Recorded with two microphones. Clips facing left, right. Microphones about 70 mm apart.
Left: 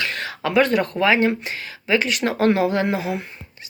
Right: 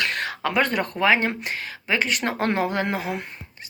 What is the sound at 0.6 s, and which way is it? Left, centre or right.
Speech, right.